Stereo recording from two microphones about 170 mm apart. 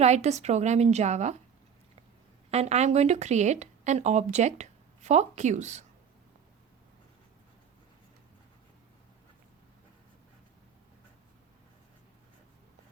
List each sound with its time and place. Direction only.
0.0 s speech: 40° right (ahead or behind)
2.5 s speech: 40° right (ahead or behind)